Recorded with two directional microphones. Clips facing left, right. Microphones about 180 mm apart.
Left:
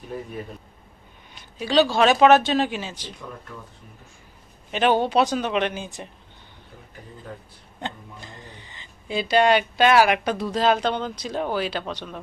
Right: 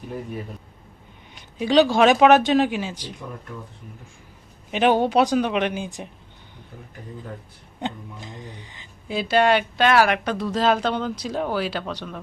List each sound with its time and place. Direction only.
1.5 s speech: 15° right (ahead or behind)
4.7 s speech: 10° right (ahead or behind)
7.8 s speech: 15° right (ahead or behind)
9.0 s speech: 5° right (ahead or behind)